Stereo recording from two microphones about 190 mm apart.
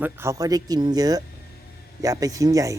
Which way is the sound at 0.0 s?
15° right (ahead or behind).